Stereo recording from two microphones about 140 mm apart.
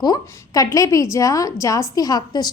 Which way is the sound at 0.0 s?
25° left (ahead or behind).